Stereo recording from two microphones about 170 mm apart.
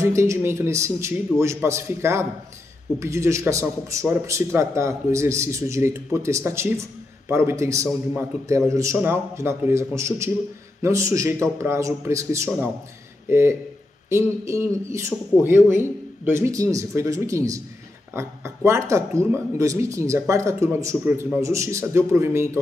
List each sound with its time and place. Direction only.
0.0 s a man's voice: 15° right (ahead or behind)